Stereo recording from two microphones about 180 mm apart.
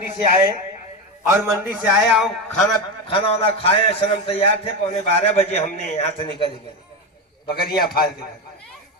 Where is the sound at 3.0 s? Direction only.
30° left (ahead or behind).